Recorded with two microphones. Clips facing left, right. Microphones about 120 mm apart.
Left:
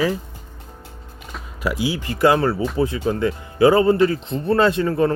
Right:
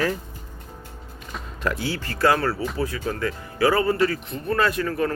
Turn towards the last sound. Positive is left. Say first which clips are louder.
# left 6 dB
turn(degrees=25)  # may be behind; listen again after turning